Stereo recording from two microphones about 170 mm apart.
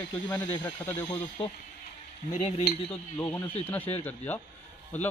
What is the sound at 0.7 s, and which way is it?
Speech, 20° left (ahead or behind).